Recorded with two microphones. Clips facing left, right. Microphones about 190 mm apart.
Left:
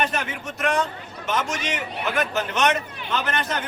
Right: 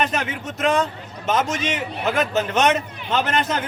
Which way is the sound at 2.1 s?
25° right (ahead or behind).